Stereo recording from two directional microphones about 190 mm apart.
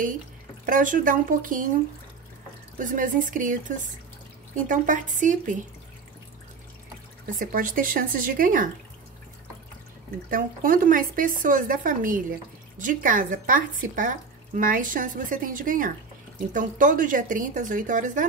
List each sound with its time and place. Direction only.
0.7 s speech: 45° right (ahead or behind)
2.8 s speech: 45° right (ahead or behind)
7.3 s speech: 45° right (ahead or behind)
10.3 s speech: 45° right (ahead or behind)